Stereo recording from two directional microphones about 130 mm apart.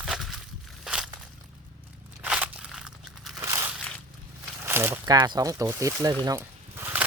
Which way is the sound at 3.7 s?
5° left (ahead or behind).